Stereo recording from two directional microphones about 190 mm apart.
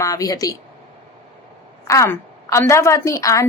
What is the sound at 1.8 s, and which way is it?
A woman's voice, 15° left (ahead or behind).